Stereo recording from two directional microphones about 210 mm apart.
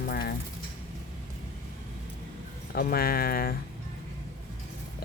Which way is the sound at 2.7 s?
45° left (ahead or behind).